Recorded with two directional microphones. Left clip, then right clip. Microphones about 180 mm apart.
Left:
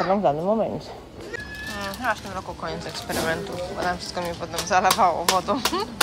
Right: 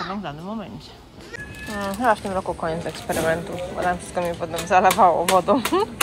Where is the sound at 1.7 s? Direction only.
Centre (ahead or behind).